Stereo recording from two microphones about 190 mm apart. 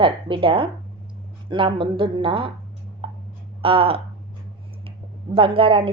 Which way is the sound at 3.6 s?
30° right (ahead or behind).